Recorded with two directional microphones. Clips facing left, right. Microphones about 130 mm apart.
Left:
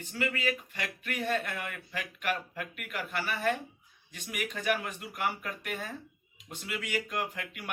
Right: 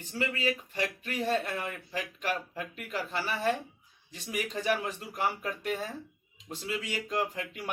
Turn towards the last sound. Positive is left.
turn(degrees=-30)  # may be behind; listen again after turning